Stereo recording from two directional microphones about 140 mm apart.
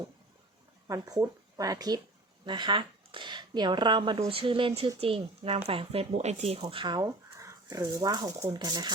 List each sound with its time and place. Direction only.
0.9 s speech: 25° right (ahead or behind)